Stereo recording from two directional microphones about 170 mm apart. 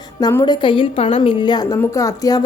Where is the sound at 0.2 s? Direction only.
25° left (ahead or behind).